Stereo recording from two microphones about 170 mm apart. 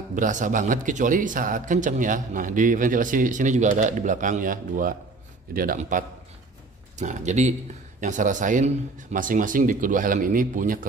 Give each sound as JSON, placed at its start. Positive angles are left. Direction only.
{"t": 0.1, "sound": "a man's voice", "side_deg": -50}